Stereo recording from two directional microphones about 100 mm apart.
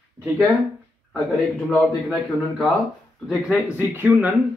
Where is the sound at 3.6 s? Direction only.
20° right (ahead or behind).